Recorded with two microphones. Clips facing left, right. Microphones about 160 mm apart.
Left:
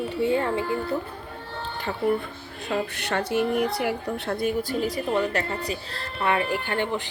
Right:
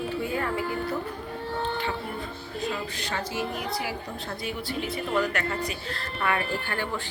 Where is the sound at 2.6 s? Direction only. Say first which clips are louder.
Left 5 dB; 65° left (ahead or behind).